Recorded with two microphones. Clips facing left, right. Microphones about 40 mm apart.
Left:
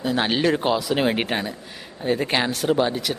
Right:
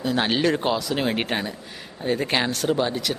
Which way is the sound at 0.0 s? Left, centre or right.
Centre.